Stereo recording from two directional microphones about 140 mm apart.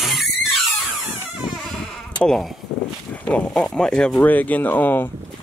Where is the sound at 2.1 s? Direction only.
5° left (ahead or behind).